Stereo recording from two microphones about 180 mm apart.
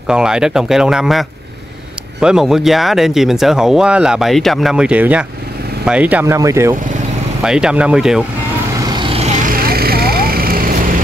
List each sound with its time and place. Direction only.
0.1 s speech: 5° right (ahead or behind)
7.4 s speech: 5° right (ahead or behind)
8.9 s vehicle: 30° right (ahead or behind)
9.4 s vehicle: 55° right (ahead or behind)